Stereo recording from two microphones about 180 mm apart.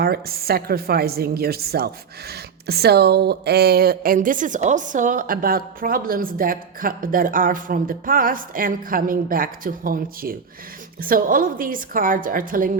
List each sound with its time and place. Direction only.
0.0 s a woman's voice: 60° right (ahead or behind)